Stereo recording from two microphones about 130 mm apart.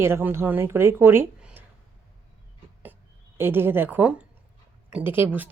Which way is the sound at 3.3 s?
15° right (ahead or behind).